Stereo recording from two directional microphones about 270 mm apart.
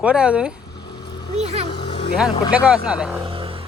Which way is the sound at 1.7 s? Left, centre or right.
Centre.